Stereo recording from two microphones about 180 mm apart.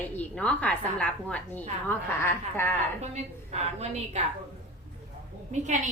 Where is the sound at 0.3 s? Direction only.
5° left (ahead or behind).